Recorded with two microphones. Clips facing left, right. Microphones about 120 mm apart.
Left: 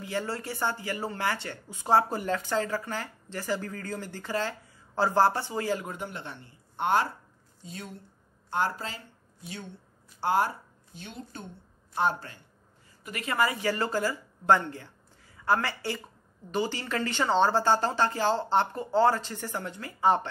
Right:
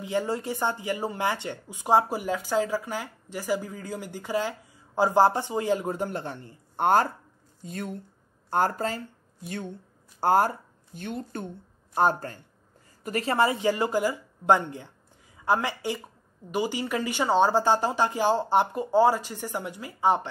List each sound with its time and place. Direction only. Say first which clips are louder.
0.0 s speech: right 5 dB; 20° right (ahead or behind)
5.9 s speech: right 7 dB; 40° right (ahead or behind)
11.9 s speech: right 4 dB; 45° right (ahead or behind); by 20.2 s 15° right (ahead or behind)